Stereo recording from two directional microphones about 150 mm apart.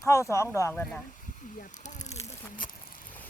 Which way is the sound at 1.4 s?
60° left (ahead or behind).